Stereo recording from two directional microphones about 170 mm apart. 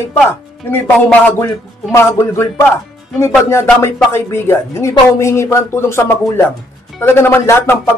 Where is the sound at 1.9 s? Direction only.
15° left (ahead or behind).